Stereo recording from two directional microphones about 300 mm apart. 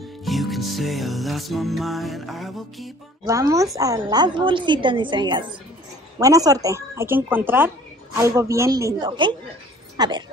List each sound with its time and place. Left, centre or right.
0.2 s music: centre
3.3 s a woman's voice: centre